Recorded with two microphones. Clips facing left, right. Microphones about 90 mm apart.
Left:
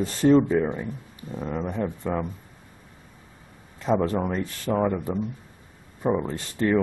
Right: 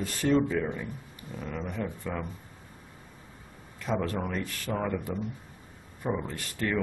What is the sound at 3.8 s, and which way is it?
Speech, 25° left (ahead or behind).